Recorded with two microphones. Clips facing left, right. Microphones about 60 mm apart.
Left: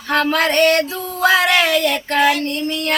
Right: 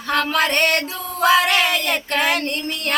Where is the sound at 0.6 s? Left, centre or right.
Right.